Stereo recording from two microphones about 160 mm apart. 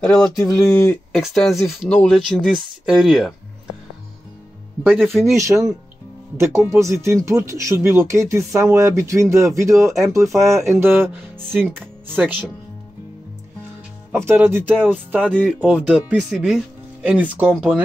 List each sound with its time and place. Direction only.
0.0 s speech: 5° left (ahead or behind)
0.7 s speech: 15° left (ahead or behind)
1.1 s speech: centre (ahead or behind)
1.9 s speech: 10° left (ahead or behind)
2.1 s speech: centre (ahead or behind)
4.8 s speech: 10° right (ahead or behind)
14.1 s speech: 15° right (ahead or behind)